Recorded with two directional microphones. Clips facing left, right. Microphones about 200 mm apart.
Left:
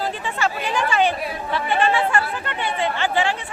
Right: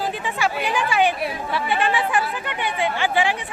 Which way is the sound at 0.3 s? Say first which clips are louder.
Even; 15° right (ahead or behind).